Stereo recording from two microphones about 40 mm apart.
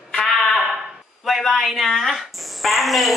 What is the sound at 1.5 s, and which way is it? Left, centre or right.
A woman's voice, centre.